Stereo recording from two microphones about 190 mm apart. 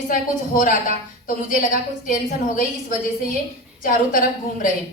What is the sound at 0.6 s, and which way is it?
A woman's voice, 45° left (ahead or behind).